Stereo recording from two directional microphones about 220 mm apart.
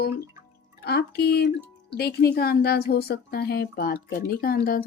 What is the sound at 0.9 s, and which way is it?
Speech, 45° left (ahead or behind).